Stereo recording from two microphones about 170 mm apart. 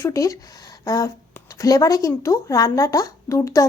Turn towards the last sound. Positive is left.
turn(degrees=15)  # may be behind; listen again after turning